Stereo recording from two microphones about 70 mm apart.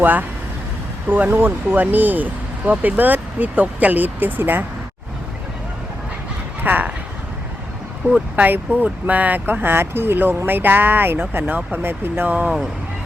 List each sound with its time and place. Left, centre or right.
0.0 s speech: right
1.3 s speech: right
6.6 s speech: right
8.1 s speech: right